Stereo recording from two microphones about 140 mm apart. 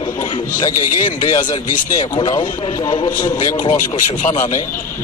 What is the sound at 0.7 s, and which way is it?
A man's voice, 70° left (ahead or behind).